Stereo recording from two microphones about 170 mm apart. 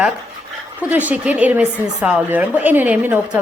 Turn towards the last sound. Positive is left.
turn(degrees=-10)  # may be behind; listen again after turning